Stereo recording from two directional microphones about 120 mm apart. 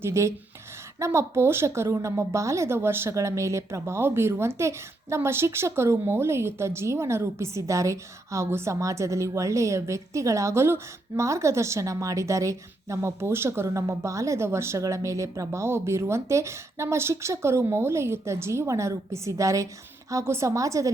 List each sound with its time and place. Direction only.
0.0 s a woman's voice: 25° right (ahead or behind)